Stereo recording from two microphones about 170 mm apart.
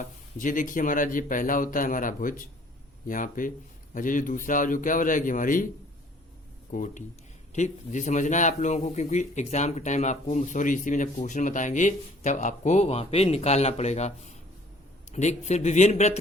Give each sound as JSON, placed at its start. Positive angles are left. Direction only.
{"t": 0.0, "sound": "speech", "side_deg": 50}
{"t": 6.7, "sound": "a man's voice", "side_deg": 50}